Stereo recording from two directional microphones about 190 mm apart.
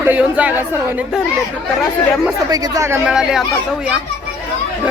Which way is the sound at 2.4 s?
20° right (ahead or behind).